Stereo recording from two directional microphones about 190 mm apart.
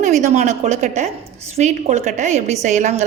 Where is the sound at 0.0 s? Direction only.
40° right (ahead or behind).